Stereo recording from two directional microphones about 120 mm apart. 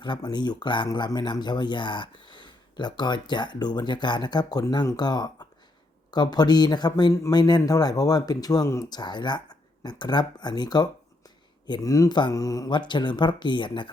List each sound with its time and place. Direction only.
0.0 s speech: 40° left (ahead or behind)
7.1 s a man's voice: 25° left (ahead or behind)
7.3 s speech: 35° left (ahead or behind)